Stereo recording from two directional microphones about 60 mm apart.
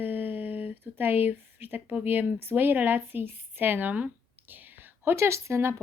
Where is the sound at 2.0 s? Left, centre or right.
Right.